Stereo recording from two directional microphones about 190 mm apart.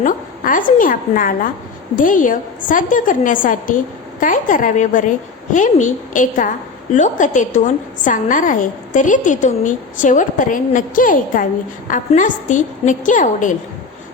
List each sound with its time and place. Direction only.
0.0 s a woman's voice: 45° left (ahead or behind)